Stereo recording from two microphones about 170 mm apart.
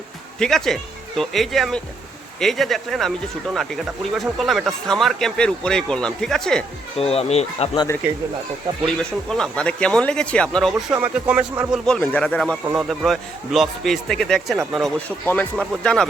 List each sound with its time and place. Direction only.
0.3 s speech: 5° left (ahead or behind)
6.9 s speech: 35° left (ahead or behind)
9.0 s speech: 5° left (ahead or behind)
10.9 s speech: 10° right (ahead or behind)
11.9 s speech: 5° left (ahead or behind)